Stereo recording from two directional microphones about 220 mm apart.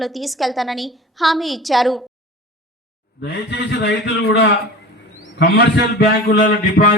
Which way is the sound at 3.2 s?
50° left (ahead or behind).